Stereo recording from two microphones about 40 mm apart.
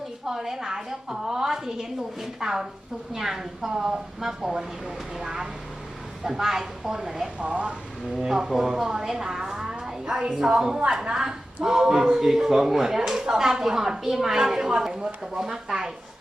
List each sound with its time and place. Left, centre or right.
0.3 s a woman's voice: centre
7.3 s speech: right
8.1 s a woman's voice: centre